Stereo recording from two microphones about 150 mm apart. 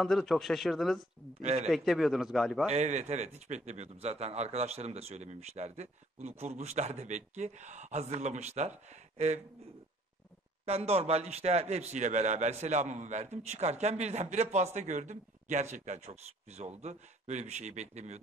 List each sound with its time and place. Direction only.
0.0 s speech: centre (ahead or behind)
1.4 s a man's voice: 45° right (ahead or behind)
1.7 s speech: centre (ahead or behind)
2.7 s a man's voice: 50° right (ahead or behind)
10.6 s a man's voice: 45° right (ahead or behind)